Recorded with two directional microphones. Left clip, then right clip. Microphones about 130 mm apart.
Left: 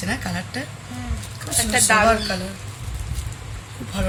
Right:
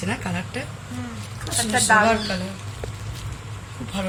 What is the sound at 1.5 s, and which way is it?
Speech, 25° left (ahead or behind).